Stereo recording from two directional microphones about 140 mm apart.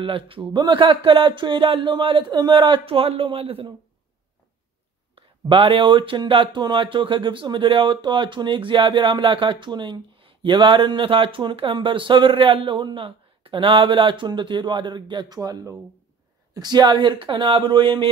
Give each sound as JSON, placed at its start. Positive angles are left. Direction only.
{"t": 0.0, "sound": "speech", "side_deg": -40}
{"t": 5.1, "sound": "speech", "side_deg": -40}